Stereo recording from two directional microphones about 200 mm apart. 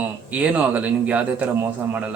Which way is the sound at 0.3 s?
5° right (ahead or behind).